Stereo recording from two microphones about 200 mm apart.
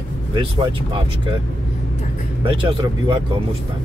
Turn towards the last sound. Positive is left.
turn(degrees=-20)  # may be behind; listen again after turning